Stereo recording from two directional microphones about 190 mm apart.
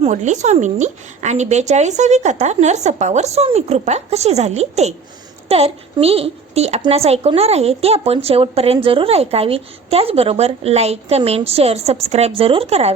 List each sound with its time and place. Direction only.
0.0 s a woman's voice: 40° right (ahead or behind)